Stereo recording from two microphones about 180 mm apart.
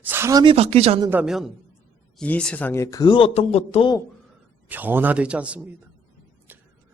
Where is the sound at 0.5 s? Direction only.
35° right (ahead or behind).